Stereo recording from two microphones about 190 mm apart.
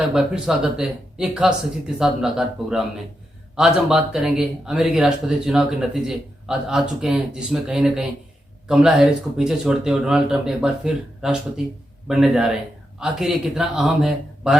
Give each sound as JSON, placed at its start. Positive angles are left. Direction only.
{"t": 0.1, "sound": "speech", "side_deg": 0}